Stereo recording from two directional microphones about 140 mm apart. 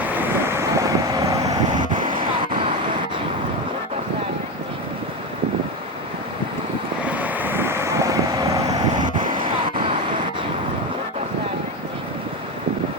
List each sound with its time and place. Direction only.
0.1 s vehicle: 15° right (ahead or behind); by 2.1 s 35° right (ahead or behind)
7.1 s vehicle: 10° right (ahead or behind); by 9.3 s 30° right (ahead or behind)